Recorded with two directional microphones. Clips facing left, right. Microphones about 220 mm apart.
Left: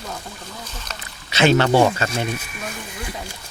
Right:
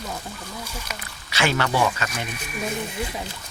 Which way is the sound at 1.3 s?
25° left (ahead or behind).